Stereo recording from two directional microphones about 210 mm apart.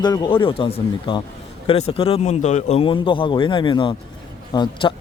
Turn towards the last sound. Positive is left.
turn(degrees=20)  # may be behind; listen again after turning